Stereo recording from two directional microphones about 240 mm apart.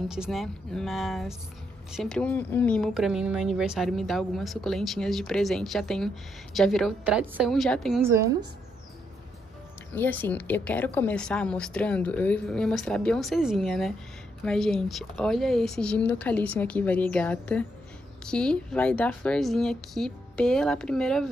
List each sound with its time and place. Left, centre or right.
0.1 s speech: centre
8.0 s a woman's voice: centre
9.9 s a woman's voice: centre